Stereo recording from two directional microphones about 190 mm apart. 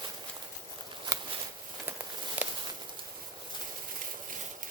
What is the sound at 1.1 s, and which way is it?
Shuffling cards, 15° right (ahead or behind).